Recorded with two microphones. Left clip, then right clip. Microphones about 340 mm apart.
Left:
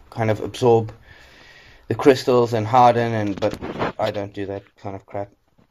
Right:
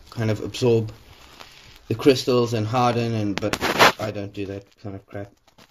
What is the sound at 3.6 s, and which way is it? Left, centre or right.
Speech, right.